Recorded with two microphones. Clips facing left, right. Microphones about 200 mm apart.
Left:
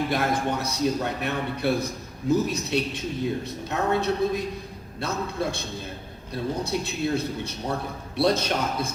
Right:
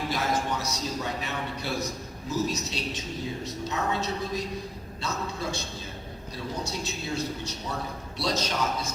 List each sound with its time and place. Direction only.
0.1 s speech: 55° left (ahead or behind)